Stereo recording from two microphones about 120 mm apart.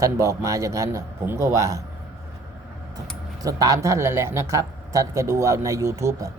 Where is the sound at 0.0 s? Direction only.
25° right (ahead or behind).